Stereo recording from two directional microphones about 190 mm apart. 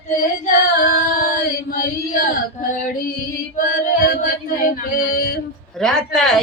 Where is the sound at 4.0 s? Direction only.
50° left (ahead or behind).